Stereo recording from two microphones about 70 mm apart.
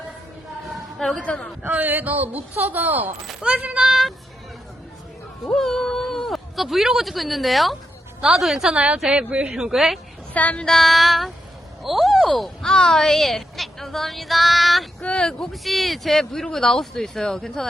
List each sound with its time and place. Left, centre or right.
0.9 s a woman's voice: centre
1.2 s speech: centre
1.6 s a woman's voice: right
3.8 s a woman's voice: centre
5.5 s a woman's voice: centre
9.6 s speech: centre
10.3 s female singing: left
10.7 s a woman's voice: centre
15.0 s speech: centre